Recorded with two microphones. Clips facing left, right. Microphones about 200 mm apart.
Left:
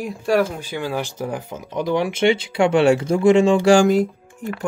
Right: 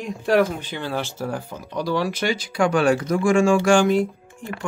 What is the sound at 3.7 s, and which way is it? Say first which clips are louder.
Speech: left 3 dB; 40° left (ahead or behind).